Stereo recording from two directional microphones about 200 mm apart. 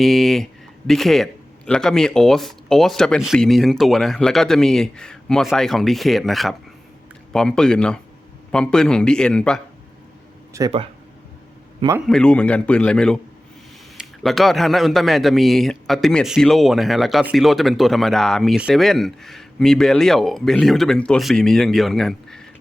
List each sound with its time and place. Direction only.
0.0 s a man's voice: centre (ahead or behind)
10.5 s a man's voice: 15° right (ahead or behind)
11.8 s a man's voice: 15° right (ahead or behind)
12.0 s a man's voice: 5° left (ahead or behind)